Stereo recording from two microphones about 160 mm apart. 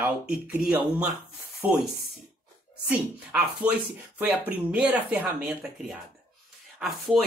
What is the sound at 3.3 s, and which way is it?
Speech, 10° right (ahead or behind).